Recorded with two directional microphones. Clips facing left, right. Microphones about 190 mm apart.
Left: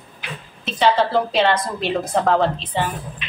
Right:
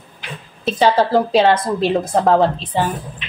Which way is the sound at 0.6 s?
40° right (ahead or behind).